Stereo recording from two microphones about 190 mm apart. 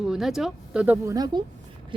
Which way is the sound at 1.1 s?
20° right (ahead or behind).